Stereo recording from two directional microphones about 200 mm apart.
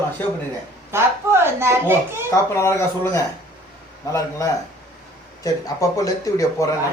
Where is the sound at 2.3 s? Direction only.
15° left (ahead or behind).